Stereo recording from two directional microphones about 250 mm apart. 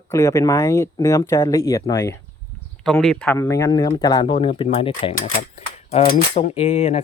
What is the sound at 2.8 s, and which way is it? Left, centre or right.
Speech, centre.